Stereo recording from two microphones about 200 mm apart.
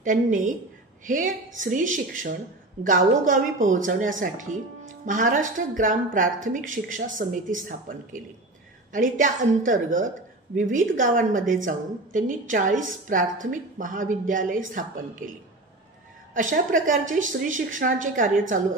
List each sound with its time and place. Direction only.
0.0 s a woman's voice: 40° right (ahead or behind)
16.3 s a woman's voice: 40° right (ahead or behind)